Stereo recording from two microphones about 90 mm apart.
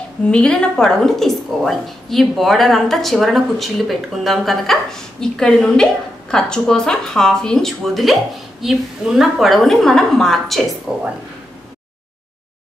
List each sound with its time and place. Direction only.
0.2 s a woman's voice: 10° left (ahead or behind)
10.9 s speech: 5° right (ahead or behind)